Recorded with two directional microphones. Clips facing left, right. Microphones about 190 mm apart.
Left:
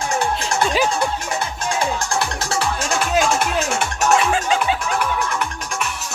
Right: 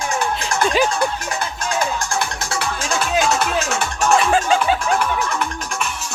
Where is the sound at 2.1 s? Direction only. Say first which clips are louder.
Left 1 dB; 35° left (ahead or behind).